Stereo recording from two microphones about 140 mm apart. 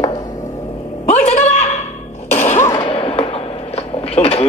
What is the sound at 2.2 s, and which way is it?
Throat clearing, 50° left (ahead or behind).